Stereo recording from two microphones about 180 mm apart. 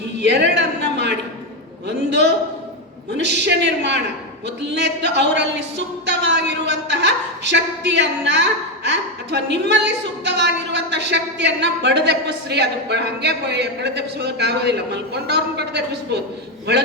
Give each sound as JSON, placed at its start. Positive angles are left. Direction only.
{"t": 0.2, "sound": "speech", "side_deg": -75}
{"t": 0.5, "sound": "a sound", "side_deg": -70}
{"t": 2.0, "sound": "speech", "side_deg": -75}